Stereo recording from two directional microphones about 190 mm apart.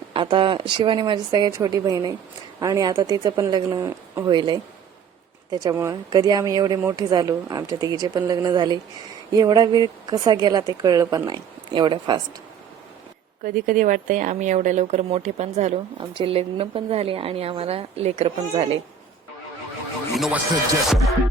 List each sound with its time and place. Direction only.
0.1 s speech: 25° right (ahead or behind)
13.4 s speech: 50° right (ahead or behind); by 18.8 s 30° right (ahead or behind)
20.1 s speech: 5° right (ahead or behind)